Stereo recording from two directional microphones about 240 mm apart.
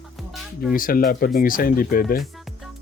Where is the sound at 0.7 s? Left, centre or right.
Left.